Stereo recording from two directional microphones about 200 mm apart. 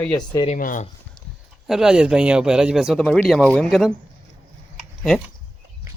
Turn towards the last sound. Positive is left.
turn(degrees=0)  # may be behind; listen again after turning